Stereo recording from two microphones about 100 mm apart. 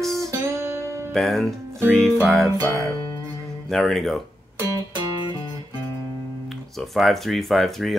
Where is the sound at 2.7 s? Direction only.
30° right (ahead or behind).